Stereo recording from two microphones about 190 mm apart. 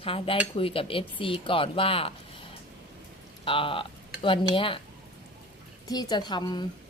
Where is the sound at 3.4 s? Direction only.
30° left (ahead or behind).